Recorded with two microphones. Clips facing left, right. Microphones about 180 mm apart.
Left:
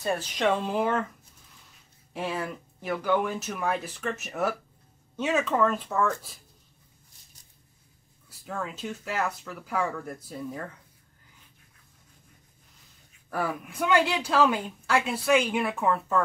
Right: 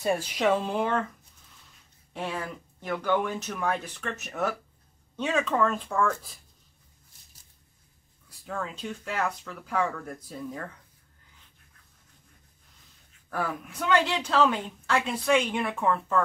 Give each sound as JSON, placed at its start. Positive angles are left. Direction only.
{"t": 0.0, "sound": "speech", "side_deg": -10}
{"t": 2.1, "sound": "speech", "side_deg": 5}
{"t": 8.3, "sound": "speech", "side_deg": 5}
{"t": 13.3, "sound": "speech", "side_deg": 5}